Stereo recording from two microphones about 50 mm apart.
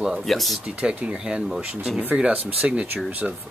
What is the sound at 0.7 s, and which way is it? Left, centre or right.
Speech, right.